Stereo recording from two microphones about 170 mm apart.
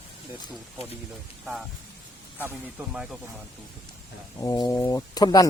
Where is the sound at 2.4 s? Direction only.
10° right (ahead or behind).